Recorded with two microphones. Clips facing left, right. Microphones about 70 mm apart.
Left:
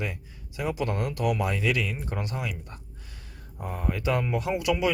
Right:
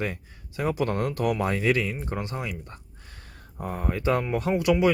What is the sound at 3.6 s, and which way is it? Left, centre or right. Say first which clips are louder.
Speech: right 2 dB; right.